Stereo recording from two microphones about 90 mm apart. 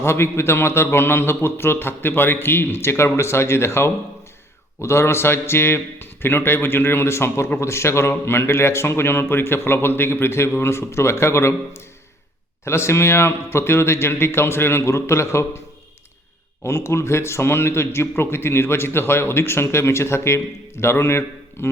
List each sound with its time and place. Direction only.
0.0 s a man's voice: 30° left (ahead or behind)
12.6 s a man's voice: 30° left (ahead or behind)
16.6 s a man's voice: 30° left (ahead or behind)